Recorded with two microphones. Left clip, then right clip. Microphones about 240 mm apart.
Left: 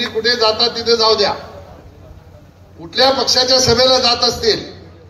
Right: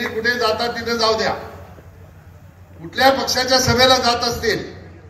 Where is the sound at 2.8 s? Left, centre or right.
Centre.